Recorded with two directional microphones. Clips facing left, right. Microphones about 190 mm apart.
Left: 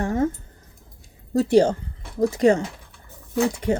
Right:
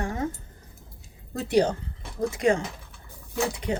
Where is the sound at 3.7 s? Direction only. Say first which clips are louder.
Left 6 dB; 45° left (ahead or behind).